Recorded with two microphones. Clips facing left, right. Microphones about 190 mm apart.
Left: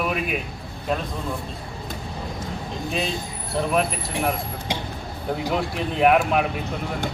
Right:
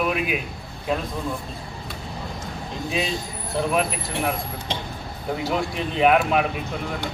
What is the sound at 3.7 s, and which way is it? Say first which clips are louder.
Speech: left 2 dB; centre (ahead or behind).